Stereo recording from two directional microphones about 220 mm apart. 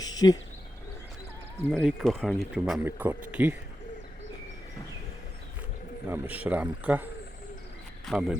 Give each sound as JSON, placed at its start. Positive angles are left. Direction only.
{"t": 0.0, "sound": "a sound", "side_deg": 15}
{"t": 1.7, "sound": "speech", "side_deg": 0}
{"t": 6.1, "sound": "speech", "side_deg": -5}